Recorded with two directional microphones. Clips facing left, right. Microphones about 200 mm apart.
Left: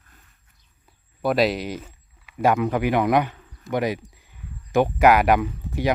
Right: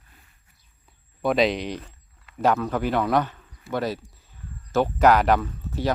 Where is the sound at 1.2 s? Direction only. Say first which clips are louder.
Left 1 dB; 5° left (ahead or behind).